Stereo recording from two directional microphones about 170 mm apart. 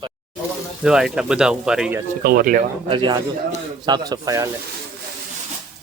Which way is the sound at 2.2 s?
60° right (ahead or behind).